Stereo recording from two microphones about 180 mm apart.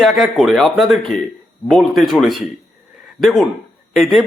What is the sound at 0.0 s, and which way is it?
A man's voice, centre (ahead or behind).